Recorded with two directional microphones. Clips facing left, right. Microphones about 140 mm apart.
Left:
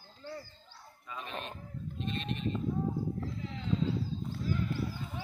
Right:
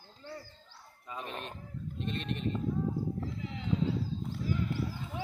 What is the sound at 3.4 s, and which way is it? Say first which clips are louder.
Clip-clop: right 1 dB; 15° right (ahead or behind).